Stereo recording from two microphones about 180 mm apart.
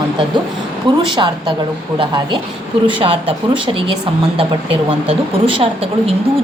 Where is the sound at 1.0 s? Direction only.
25° right (ahead or behind).